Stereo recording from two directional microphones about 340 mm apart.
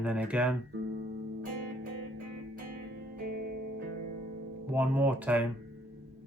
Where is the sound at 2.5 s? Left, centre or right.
Right.